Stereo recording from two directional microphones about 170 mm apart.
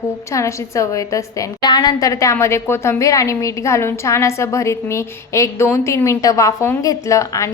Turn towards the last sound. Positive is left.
turn(degrees=20)  # may be behind; listen again after turning